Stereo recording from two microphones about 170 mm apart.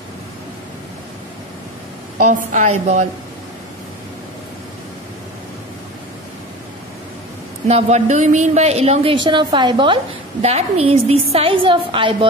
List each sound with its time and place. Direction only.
2.1 s a woman's voice: 45° right (ahead or behind)
7.6 s a woman's voice: 40° right (ahead or behind); by 9.9 s 25° right (ahead or behind)
10.4 s a woman's voice: 35° right (ahead or behind)